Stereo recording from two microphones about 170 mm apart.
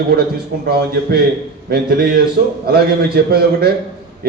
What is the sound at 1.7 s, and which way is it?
A man's voice, 60° right (ahead or behind).